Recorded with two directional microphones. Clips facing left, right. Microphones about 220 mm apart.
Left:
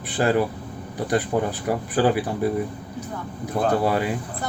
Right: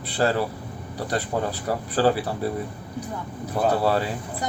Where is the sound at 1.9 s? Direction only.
15° left (ahead or behind).